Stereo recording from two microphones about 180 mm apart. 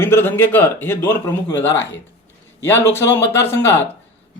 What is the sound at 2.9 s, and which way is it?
Speech, 15° left (ahead or behind).